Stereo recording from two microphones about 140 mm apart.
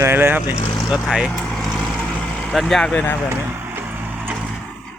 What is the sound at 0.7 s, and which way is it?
Vehicle, 5° right (ahead or behind).